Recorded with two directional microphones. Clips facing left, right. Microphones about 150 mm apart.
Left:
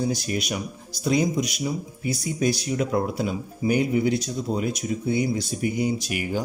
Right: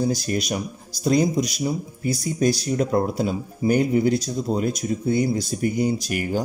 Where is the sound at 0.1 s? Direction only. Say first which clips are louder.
Right 3 dB; 40° right (ahead or behind).